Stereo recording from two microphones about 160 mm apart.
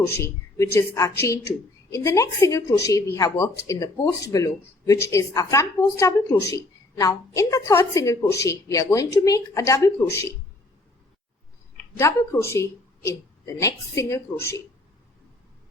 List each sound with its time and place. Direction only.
0.2 s speech: 20° left (ahead or behind)
11.9 s a woman's voice: 15° left (ahead or behind)